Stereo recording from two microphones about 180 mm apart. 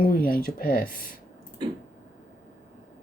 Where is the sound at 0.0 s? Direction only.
55° left (ahead or behind).